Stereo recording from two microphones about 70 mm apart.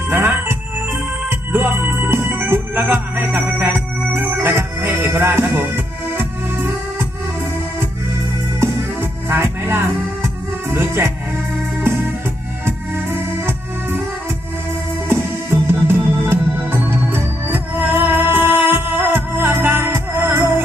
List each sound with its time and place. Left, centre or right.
0.1 s music: right
3.6 s organ: right
8.6 s music: right
12.6 s music: right
15.0 s music: right